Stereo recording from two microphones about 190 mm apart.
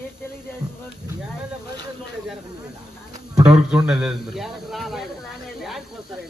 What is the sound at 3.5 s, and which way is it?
A man's voice, 5° right (ahead or behind).